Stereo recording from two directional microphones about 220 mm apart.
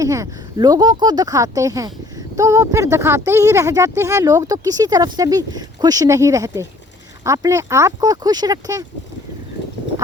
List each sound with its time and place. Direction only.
0.0 s speech: 15° right (ahead or behind)